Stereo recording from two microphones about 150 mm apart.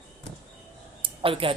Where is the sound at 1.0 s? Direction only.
35° right (ahead or behind).